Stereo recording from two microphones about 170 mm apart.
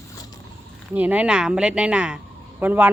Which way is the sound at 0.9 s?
10° right (ahead or behind).